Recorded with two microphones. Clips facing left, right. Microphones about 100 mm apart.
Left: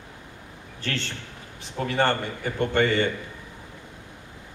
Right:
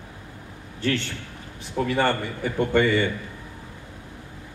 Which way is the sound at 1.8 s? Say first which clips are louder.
Left 1 dB; 55° left (ahead or behind).